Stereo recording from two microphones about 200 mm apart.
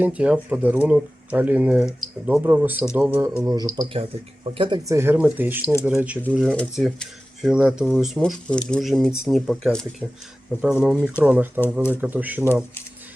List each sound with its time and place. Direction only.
0.0 s speech: 5° right (ahead or behind)